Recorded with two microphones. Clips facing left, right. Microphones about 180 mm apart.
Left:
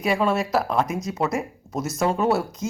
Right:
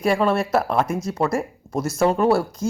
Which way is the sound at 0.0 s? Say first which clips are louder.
Right 3 dB; centre (ahead or behind).